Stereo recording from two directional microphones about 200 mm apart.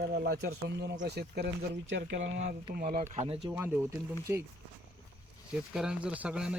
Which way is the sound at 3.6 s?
10° right (ahead or behind).